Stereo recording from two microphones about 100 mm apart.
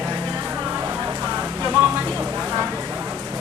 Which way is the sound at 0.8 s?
20° right (ahead or behind).